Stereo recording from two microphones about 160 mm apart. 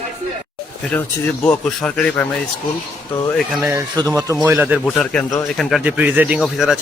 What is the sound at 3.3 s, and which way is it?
Speech, centre (ahead or behind).